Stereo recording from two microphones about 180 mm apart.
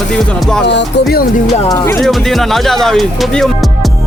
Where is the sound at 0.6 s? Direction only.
75° left (ahead or behind).